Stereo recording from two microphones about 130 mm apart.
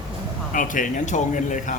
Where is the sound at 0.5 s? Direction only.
85° left.